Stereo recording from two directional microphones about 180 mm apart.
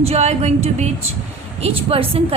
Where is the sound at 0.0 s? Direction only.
35° right (ahead or behind).